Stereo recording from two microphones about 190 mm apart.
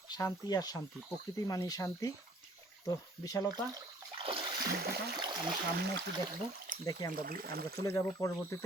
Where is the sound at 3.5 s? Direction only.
20° right (ahead or behind).